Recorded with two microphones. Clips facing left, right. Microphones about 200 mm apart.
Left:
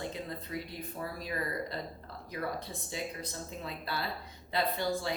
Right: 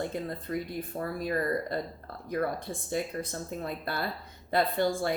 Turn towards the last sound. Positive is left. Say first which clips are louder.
# right 5 dB
turn(degrees=-50)  # may be behind; listen again after turning